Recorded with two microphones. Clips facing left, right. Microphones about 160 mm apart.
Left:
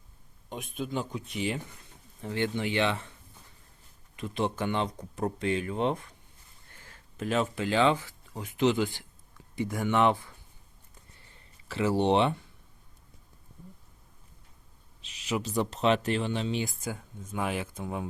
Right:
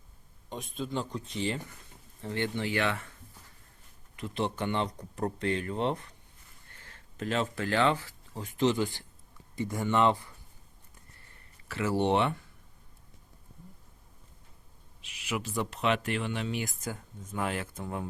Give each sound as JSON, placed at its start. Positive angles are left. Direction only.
{"t": 0.5, "sound": "speech", "side_deg": 5}
{"t": 4.2, "sound": "speech", "side_deg": 15}
{"t": 11.1, "sound": "a sound", "side_deg": 20}
{"t": 15.0, "sound": "a sound", "side_deg": 25}
{"t": 15.5, "sound": "speech", "side_deg": 30}
{"t": 16.8, "sound": "speech", "side_deg": 15}